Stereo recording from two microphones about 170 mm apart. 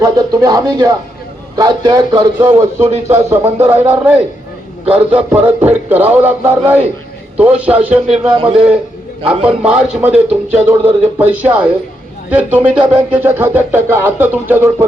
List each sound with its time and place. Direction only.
0.0 s speech: 20° right (ahead or behind); by 8.3 s 5° right (ahead or behind)
8.3 s speech: 30° right (ahead or behind)
9.2 s speech: 5° right (ahead or behind)